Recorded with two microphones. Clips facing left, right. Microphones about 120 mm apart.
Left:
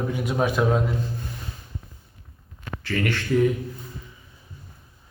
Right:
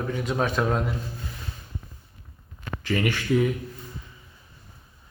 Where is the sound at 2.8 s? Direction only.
15° right (ahead or behind).